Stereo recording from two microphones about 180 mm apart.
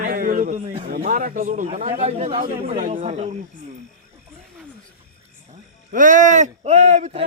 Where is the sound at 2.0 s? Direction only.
35° right (ahead or behind).